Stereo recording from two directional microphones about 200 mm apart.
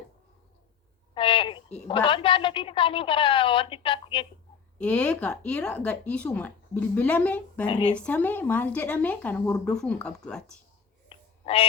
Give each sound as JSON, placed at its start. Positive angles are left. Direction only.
{"t": 1.1, "sound": "a woman's voice", "side_deg": 25}
{"t": 4.8, "sound": "speech", "side_deg": 5}
{"t": 11.1, "sound": "a sound", "side_deg": 30}